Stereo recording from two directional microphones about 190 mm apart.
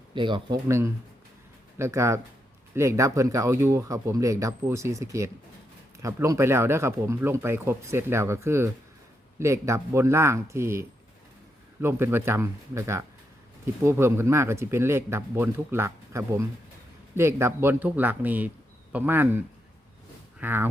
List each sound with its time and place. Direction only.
0.1 s speech: 25° right (ahead or behind); by 19.4 s 10° right (ahead or behind)
20.4 s speech: 10° right (ahead or behind)